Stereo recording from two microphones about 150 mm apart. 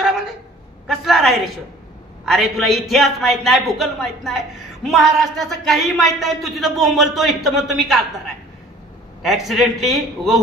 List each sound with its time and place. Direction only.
0.8 s a woman's voice: centre (ahead or behind)
9.2 s a man's voice: centre (ahead or behind)